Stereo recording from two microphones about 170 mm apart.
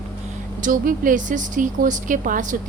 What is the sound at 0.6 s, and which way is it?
Speech, 55° right (ahead or behind).